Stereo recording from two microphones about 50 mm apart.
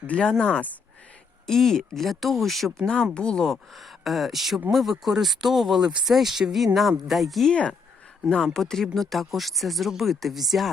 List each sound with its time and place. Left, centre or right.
0.1 s speech: centre
1.5 s speech: centre
2.8 s speech: centre
8.5 s speech: centre